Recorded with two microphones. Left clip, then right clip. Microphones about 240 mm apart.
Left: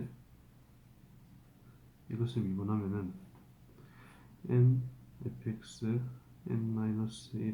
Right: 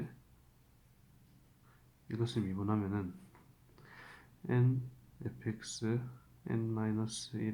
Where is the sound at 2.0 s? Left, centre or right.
Right.